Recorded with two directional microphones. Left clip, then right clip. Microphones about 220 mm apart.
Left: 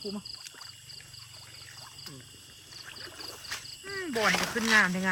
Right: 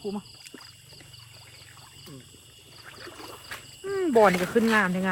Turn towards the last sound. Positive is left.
turn(degrees=0)  # may be behind; listen again after turning